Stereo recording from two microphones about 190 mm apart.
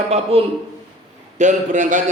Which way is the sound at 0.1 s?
30° right (ahead or behind).